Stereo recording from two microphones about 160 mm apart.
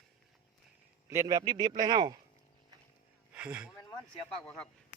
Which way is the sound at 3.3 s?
10° right (ahead or behind).